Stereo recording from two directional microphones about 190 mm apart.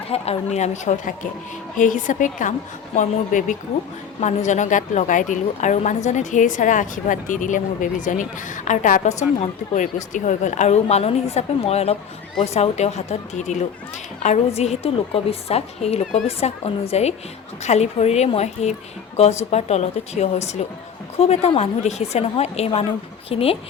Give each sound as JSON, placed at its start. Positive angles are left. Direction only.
{"t": 0.1, "sound": "a woman's voice", "side_deg": 35}